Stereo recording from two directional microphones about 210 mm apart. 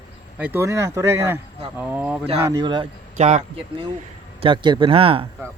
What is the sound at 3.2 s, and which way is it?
Speech, 30° right (ahead or behind).